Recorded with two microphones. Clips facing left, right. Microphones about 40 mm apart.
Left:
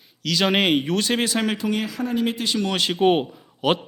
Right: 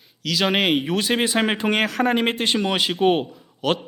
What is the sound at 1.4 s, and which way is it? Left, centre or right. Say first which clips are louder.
Speech: right 3 dB; right.